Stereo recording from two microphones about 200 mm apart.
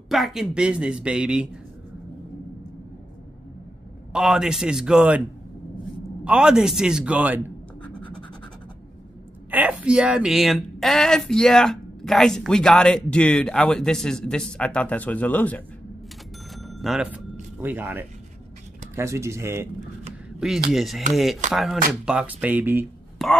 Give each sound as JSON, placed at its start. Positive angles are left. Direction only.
{"t": 0.1, "sound": "speech", "side_deg": 0}
{"t": 4.1, "sound": "speech", "side_deg": -5}
{"t": 6.2, "sound": "speech", "side_deg": -5}
{"t": 9.5, "sound": "speech", "side_deg": -10}
{"t": 16.5, "sound": "music", "side_deg": 0}
{"t": 18.9, "sound": "speech", "side_deg": -15}